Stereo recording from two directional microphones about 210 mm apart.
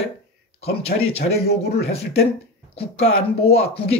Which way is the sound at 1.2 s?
45° left (ahead or behind).